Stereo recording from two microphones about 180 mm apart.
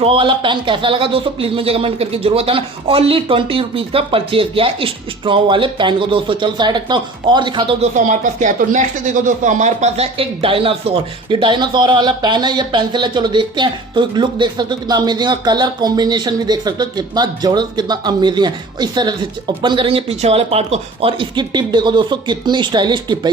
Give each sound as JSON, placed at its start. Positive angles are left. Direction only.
{"t": 0.0, "sound": "speech", "side_deg": -30}
{"t": 7.9, "sound": "speech", "side_deg": -45}